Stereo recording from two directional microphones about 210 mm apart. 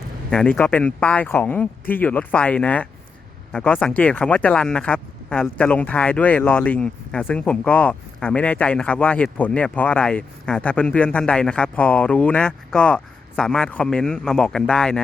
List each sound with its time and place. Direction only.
0.3 s speech: 5° left (ahead or behind)